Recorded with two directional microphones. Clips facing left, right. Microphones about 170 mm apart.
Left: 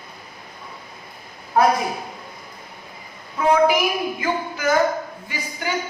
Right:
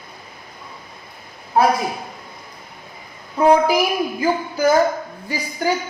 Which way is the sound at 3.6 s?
35° right (ahead or behind).